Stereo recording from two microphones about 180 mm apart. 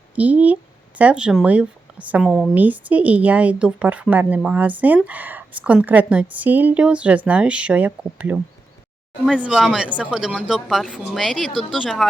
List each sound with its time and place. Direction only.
0.2 s speech: 10° right (ahead or behind)
9.4 s a woman's voice: centre (ahead or behind)